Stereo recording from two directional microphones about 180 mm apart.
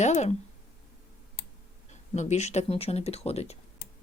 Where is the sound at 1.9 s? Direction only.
40° left (ahead or behind).